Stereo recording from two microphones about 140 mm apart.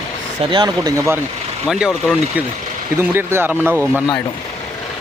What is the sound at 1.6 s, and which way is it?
Speech, centre (ahead or behind).